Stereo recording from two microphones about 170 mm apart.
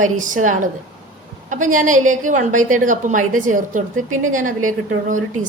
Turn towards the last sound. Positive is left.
turn(degrees=-50)  # may be behind; listen again after turning